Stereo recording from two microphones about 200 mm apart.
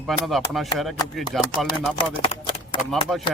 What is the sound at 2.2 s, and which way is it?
Clip-clop, 25° left (ahead or behind).